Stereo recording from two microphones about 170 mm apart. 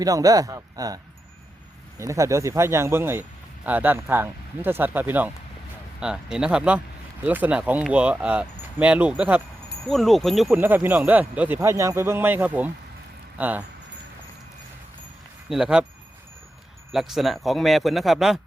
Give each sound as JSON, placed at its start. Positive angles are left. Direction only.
{"t": 0.0, "sound": "speech", "side_deg": -20}
{"t": 10.6, "sound": "speech", "side_deg": -10}
{"t": 15.4, "sound": "speech", "side_deg": -5}
{"t": 16.9, "sound": "speech", "side_deg": 0}